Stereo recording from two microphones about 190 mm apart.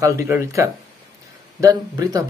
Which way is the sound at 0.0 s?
15° right (ahead or behind).